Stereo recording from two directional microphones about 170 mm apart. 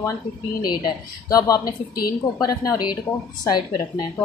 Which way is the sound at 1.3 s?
20° left (ahead or behind).